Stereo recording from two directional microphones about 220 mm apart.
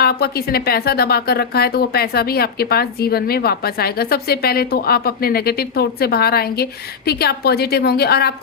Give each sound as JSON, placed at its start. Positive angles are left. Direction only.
{"t": 0.0, "sound": "a woman's voice", "side_deg": 45}